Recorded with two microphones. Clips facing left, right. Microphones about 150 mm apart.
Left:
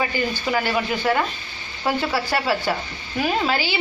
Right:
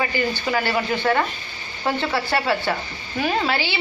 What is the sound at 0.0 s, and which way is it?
A woman's voice, 15° left (ahead or behind).